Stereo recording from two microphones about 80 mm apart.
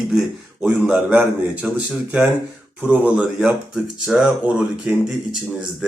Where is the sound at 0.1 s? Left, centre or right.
Centre.